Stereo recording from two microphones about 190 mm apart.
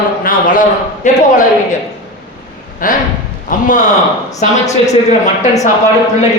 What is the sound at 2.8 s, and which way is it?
A man's voice, 45° left (ahead or behind).